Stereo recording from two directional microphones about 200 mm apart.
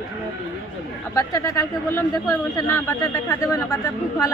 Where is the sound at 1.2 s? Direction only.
15° left (ahead or behind).